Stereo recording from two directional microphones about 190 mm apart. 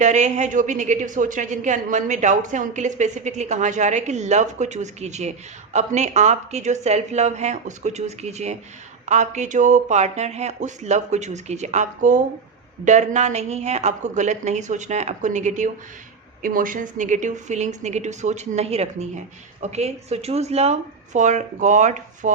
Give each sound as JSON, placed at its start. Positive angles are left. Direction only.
{"t": 0.0, "sound": "a woman's voice", "side_deg": -40}